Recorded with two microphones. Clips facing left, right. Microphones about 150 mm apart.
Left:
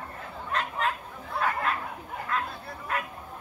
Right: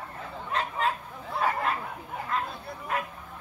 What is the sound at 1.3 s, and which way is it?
Bow-wow, 30° right (ahead or behind).